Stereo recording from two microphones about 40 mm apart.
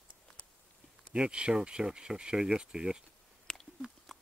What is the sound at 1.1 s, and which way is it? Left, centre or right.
Speech, right.